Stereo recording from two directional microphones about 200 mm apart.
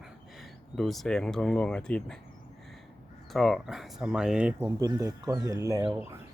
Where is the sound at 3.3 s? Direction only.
Centre (ahead or behind).